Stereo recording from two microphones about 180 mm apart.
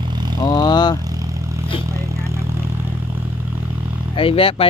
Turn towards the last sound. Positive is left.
turn(degrees=30)  # may be behind; listen again after turning